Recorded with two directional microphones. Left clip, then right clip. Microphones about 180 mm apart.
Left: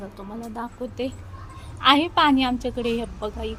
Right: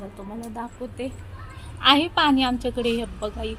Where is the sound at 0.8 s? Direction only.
15° left (ahead or behind).